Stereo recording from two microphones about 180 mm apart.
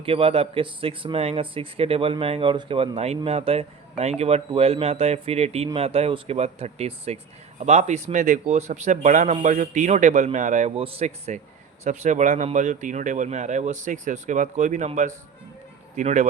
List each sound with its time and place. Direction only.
0.0 s speech: 30° right (ahead or behind)